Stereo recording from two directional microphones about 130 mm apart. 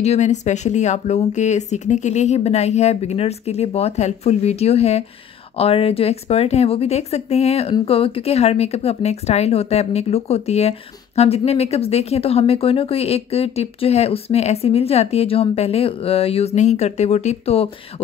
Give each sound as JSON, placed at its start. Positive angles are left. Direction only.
{"t": 0.0, "sound": "speech", "side_deg": 60}